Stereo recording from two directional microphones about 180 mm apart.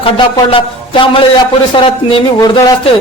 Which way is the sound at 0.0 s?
30° left (ahead or behind).